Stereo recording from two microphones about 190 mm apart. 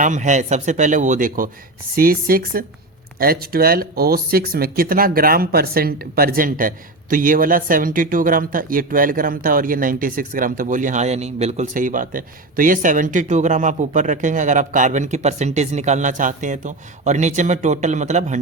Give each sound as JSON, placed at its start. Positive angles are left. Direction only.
{"t": 0.0, "sound": "speech", "side_deg": -40}